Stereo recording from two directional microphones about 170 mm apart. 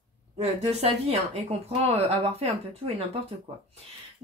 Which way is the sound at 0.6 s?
35° right (ahead or behind).